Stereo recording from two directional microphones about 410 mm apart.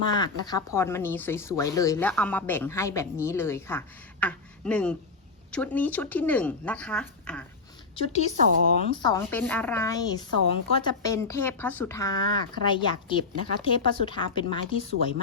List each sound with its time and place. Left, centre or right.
0.1 s speech: centre
7.9 s a woman's voice: centre
8.4 s speech: centre
8.9 s a woman's voice: centre